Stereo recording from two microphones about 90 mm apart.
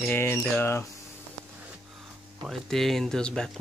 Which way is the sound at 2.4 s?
5° left (ahead or behind).